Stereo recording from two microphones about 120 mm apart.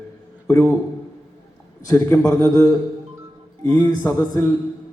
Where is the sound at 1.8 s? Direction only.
25° left (ahead or behind).